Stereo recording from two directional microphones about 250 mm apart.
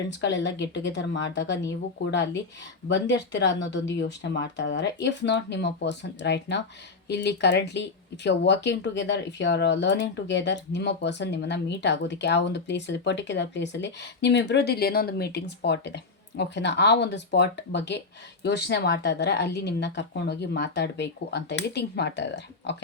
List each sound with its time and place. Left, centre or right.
0.2 s speech: left